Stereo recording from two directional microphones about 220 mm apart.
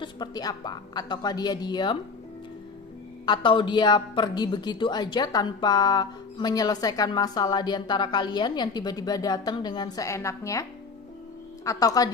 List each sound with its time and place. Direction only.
0.0 s a woman's voice: 20° left (ahead or behind)
3.2 s a woman's voice: 20° left (ahead or behind)